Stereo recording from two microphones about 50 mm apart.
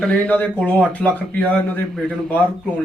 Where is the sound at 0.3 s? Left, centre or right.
Left.